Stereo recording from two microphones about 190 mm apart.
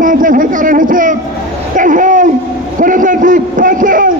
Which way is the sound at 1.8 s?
45° right (ahead or behind).